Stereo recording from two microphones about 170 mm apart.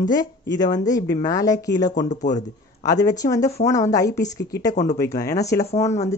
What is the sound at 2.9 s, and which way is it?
Speech, 20° left (ahead or behind).